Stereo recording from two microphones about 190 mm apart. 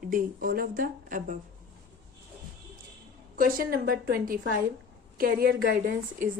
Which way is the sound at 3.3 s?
50° right (ahead or behind).